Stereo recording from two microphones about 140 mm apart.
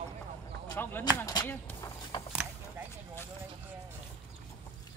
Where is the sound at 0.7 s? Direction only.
15° left (ahead or behind).